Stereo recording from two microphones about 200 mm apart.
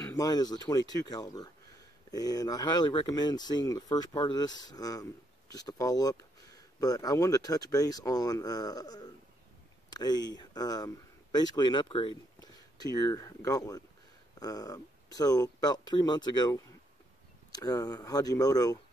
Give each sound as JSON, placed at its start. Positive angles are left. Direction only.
{"t": 0.0, "sound": "speech", "side_deg": 15}